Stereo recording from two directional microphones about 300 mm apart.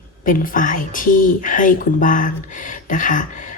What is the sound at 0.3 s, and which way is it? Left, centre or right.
Speech, left.